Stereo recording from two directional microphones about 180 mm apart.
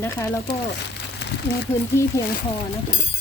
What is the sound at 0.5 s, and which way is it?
Speech, 65° left (ahead or behind).